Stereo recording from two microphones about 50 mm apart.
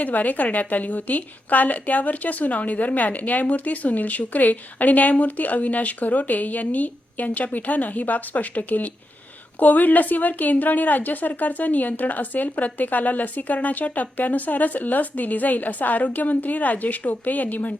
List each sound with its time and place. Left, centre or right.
0.0 s a woman's voice: left